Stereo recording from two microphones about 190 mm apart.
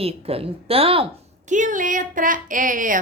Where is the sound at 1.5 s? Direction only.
40° right (ahead or behind).